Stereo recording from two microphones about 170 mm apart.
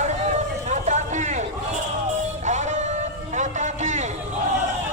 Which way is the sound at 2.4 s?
45° right (ahead or behind).